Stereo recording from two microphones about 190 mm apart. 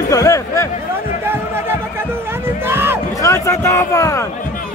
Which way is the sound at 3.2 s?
15° left (ahead or behind).